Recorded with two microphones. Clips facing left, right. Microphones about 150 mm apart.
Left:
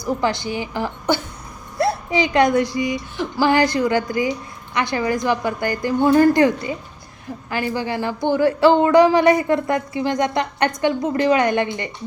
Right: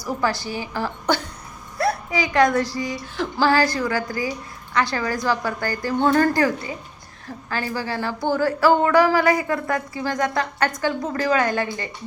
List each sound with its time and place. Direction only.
0.2 s a woman's voice: 20° left (ahead or behind)